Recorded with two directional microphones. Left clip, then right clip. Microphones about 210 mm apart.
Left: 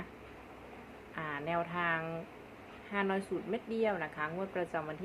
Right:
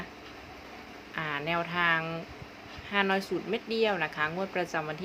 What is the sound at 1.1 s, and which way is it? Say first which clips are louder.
Speech: right 5 dB; 20° right (ahead or behind).